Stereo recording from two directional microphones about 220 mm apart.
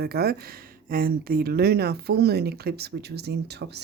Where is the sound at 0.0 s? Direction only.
45° right (ahead or behind).